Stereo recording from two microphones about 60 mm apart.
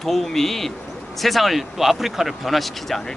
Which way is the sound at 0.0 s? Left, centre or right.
Centre.